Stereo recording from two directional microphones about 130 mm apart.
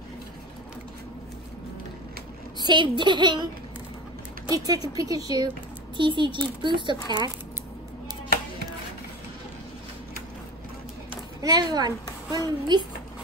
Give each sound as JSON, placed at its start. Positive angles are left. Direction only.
{"t": 2.6, "sound": "a child's voice", "side_deg": -35}
{"t": 4.5, "sound": "a child's voice", "side_deg": -30}
{"t": 11.4, "sound": "a child's voice", "side_deg": -30}